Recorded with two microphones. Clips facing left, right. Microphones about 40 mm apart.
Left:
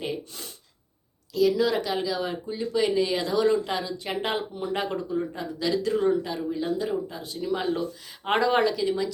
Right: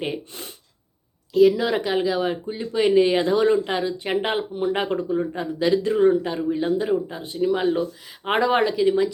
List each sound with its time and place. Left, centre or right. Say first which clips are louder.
0.0 s speech: right 3 dB; right